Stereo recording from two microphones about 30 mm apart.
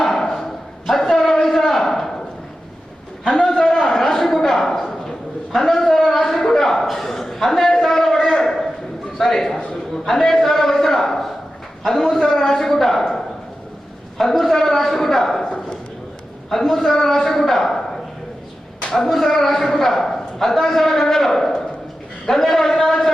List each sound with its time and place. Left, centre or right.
0.0 s dog: centre
0.9 s a sound: centre
3.2 s a man's voice: left
3.5 s a sound: centre
9.1 s a man's voice: centre
16.5 s a man's voice: centre
18.9 s a man's voice: centre